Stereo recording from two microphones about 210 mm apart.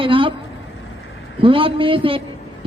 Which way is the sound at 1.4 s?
25° right (ahead or behind).